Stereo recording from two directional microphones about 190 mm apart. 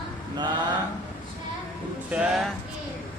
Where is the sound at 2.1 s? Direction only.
5° right (ahead or behind).